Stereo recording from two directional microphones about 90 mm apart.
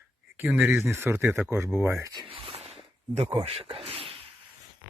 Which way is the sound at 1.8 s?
35° right (ahead or behind).